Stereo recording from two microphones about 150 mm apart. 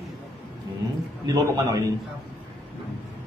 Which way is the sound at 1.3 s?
25° right (ahead or behind).